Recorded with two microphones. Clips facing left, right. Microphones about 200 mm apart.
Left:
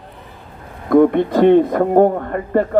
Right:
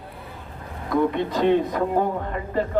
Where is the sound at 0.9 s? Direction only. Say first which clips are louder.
Left 10 dB; 55° left (ahead or behind).